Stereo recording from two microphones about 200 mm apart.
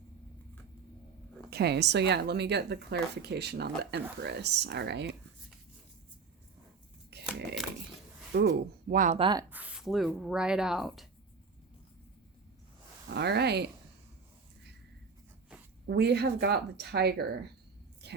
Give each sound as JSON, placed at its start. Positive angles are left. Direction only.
{"t": 1.5, "sound": "speech", "side_deg": -55}
{"t": 7.3, "sound": "a sound", "side_deg": 0}
{"t": 8.3, "sound": "speech", "side_deg": -55}
{"t": 9.1, "sound": "speech", "side_deg": -25}
{"t": 9.5, "sound": "speech", "side_deg": -5}
{"t": 13.1, "sound": "speech", "side_deg": -55}
{"t": 15.9, "sound": "speech", "side_deg": -55}
{"t": 18.0, "sound": "a sound", "side_deg": -55}